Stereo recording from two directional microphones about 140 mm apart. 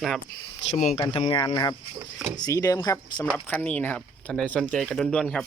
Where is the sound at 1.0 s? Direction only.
35° left (ahead or behind).